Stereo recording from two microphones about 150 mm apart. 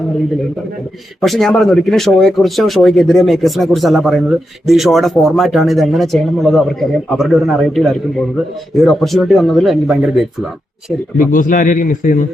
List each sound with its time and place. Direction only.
1.2 s speech: centre (ahead or behind)
11.2 s a man's voice: 65° left (ahead or behind)